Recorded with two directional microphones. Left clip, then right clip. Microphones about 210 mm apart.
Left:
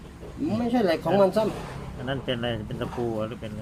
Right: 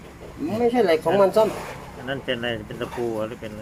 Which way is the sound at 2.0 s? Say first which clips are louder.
Right 3 dB; centre (ahead or behind).